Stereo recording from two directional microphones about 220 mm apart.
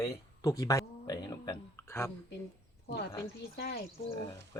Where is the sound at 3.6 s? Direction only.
45° left (ahead or behind).